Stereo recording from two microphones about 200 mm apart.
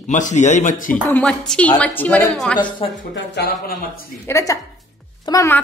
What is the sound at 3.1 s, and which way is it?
Speech, 60° left (ahead or behind).